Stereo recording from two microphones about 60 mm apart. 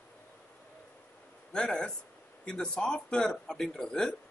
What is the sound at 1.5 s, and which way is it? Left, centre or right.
Speech, centre.